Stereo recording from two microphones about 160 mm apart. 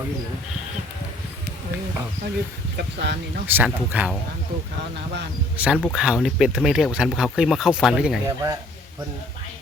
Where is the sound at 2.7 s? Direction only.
90° right.